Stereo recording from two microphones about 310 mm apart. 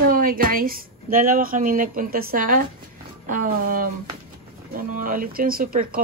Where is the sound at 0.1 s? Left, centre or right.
Right.